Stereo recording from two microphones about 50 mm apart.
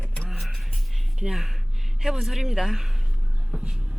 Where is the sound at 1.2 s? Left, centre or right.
Centre.